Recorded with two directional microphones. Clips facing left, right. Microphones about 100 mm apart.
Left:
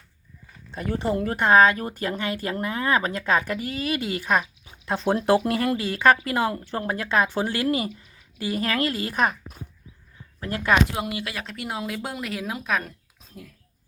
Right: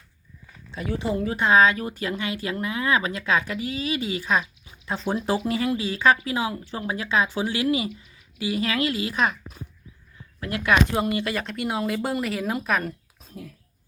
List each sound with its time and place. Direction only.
0.7 s speech: 50° left (ahead or behind)
10.4 s speech: 35° left (ahead or behind)
10.9 s speech: 5° left (ahead or behind)